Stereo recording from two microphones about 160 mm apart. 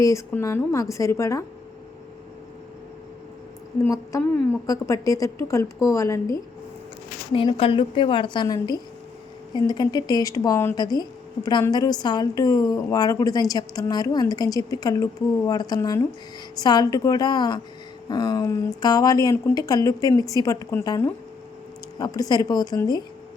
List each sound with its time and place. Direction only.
0.0 s a woman's voice: 20° left (ahead or behind)
3.8 s a woman's voice: 20° left (ahead or behind)
7.3 s a woman's voice: 35° left (ahead or behind)